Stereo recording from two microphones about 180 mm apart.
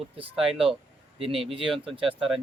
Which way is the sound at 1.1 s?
30° right (ahead or behind).